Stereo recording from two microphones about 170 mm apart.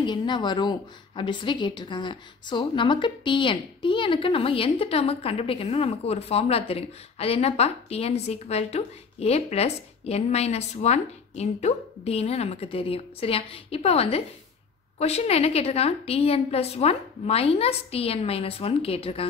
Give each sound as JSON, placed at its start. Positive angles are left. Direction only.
{"t": 0.0, "sound": "a woman's voice", "side_deg": 25}